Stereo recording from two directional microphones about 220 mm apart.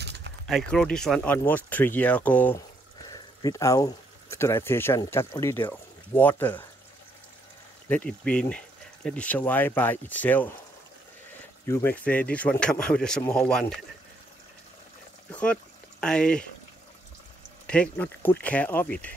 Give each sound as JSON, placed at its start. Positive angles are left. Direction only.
{"t": 0.0, "sound": "a sound", "side_deg": -50}
{"t": 0.5, "sound": "speech", "side_deg": 0}
{"t": 7.9, "sound": "speech", "side_deg": 5}
{"t": 11.6, "sound": "speech", "side_deg": 10}
{"t": 15.3, "sound": "speech", "side_deg": 5}
{"t": 17.6, "sound": "speech", "side_deg": 5}